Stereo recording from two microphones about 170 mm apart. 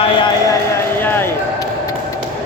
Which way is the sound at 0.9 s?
10° left (ahead or behind).